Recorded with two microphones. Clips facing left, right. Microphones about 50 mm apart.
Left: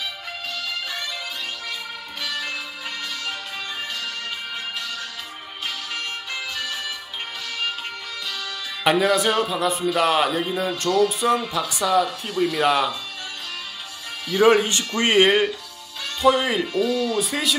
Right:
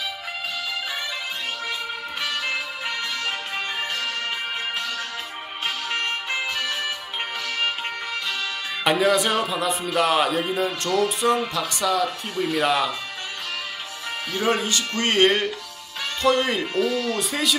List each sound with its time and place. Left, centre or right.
2.2 s music: right
5.9 s music: right
8.8 s speech: centre
14.3 s speech: left
15.0 s speech: centre